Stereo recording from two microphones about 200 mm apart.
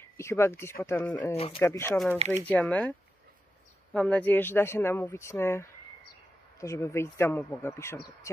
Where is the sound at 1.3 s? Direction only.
30° left (ahead or behind).